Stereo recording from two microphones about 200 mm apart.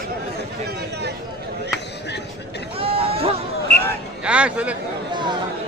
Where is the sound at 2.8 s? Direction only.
30° right (ahead or behind).